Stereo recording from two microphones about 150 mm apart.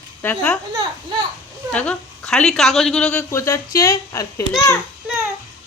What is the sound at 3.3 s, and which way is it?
Speech, 20° left (ahead or behind).